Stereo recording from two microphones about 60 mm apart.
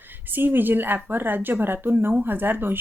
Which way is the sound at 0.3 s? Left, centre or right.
Right.